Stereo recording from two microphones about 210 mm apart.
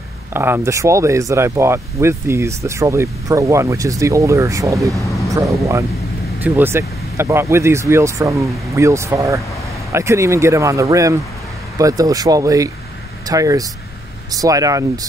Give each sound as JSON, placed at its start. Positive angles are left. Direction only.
{"t": 0.3, "sound": "speech", "side_deg": -10}
{"t": 4.9, "sound": "a sound", "side_deg": 15}
{"t": 5.3, "sound": "speech", "side_deg": -15}